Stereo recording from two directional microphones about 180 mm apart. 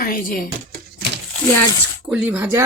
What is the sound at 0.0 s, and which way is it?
Speech, 50° left (ahead or behind).